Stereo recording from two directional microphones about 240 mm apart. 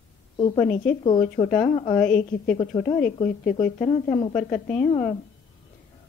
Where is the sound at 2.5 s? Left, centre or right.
Left.